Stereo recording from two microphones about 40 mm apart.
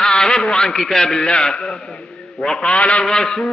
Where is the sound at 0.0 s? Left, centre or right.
Centre.